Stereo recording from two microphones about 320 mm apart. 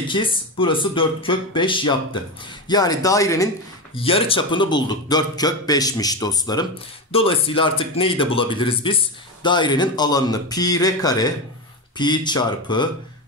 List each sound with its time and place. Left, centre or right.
0.1 s speech: centre